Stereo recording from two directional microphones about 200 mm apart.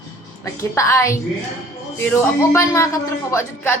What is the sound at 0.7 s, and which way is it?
A man's voice, 15° left (ahead or behind).